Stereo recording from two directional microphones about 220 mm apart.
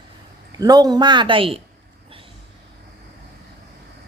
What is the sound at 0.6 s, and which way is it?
A woman's voice, 15° right (ahead or behind).